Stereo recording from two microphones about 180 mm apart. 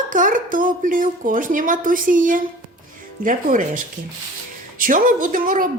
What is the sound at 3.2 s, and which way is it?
Speech, 45° right (ahead or behind).